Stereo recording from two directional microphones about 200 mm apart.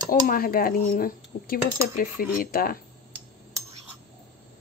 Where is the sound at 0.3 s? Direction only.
45° left (ahead or behind).